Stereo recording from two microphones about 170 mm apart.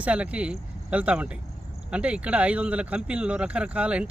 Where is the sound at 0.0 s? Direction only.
5° right (ahead or behind).